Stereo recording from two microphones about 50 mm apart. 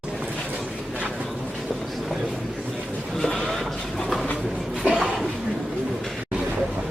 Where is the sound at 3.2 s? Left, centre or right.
Centre.